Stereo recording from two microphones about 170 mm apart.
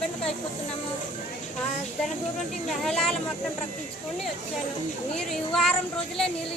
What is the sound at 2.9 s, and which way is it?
Speech, 5° left (ahead or behind).